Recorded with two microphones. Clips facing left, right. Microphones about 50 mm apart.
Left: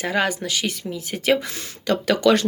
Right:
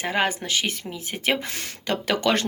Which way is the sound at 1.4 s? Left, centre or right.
Right.